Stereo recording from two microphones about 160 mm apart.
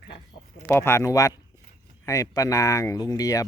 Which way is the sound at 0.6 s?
15° left (ahead or behind).